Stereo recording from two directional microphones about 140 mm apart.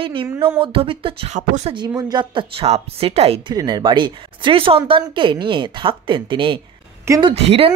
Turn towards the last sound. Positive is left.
turn(degrees=-45)  # may be behind; listen again after turning